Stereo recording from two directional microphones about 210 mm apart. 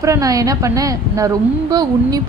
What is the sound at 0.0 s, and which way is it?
Speech, 15° right (ahead or behind).